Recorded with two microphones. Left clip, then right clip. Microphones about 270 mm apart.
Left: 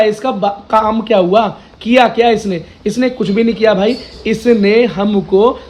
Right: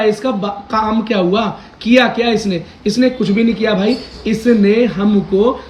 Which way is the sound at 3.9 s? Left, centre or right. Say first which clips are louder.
Left 2 dB; centre.